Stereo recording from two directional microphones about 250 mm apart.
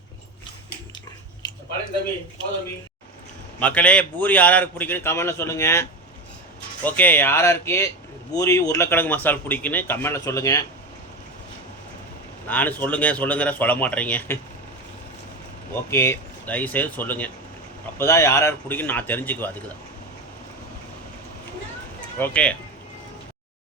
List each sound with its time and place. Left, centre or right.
3.6 s speech: centre
6.8 s speech: centre
12.5 s speech: centre
15.7 s speech: centre
22.2 s speech: centre